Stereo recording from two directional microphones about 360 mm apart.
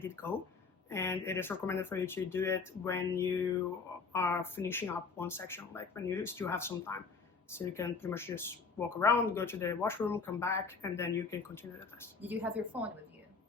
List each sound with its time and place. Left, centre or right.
0.0 s speech: centre
12.2 s a woman's voice: centre